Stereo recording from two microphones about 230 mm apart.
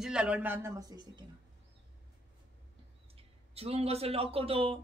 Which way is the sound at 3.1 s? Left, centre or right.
Right.